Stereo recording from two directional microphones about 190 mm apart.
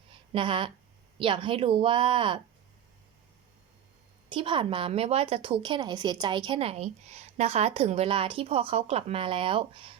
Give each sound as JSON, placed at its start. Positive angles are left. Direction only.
{"t": 0.1, "sound": "a sound", "side_deg": -25}
{"t": 1.2, "sound": "a woman's voice", "side_deg": -25}
{"t": 4.3, "sound": "a woman's voice", "side_deg": -25}